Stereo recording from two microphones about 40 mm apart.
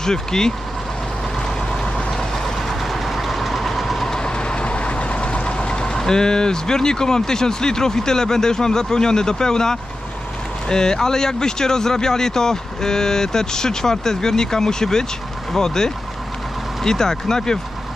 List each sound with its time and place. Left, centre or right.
0.0 s speech: centre
1.7 s vehicle: centre
2.8 s train: centre
4.1 s vehicle: left
5.9 s speech: centre